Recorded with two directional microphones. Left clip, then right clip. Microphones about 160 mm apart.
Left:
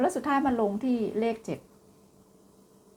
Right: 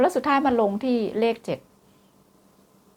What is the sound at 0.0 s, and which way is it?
Speech, 35° right (ahead or behind).